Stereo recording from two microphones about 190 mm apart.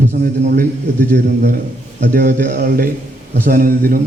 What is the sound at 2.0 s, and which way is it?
A man's voice, 45° right (ahead or behind).